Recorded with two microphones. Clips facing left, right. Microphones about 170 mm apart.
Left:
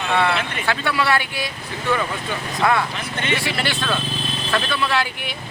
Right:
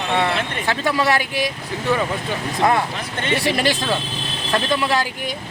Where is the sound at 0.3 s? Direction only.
40° right (ahead or behind).